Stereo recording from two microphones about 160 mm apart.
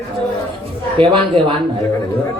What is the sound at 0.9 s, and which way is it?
Speech, 35° right (ahead or behind).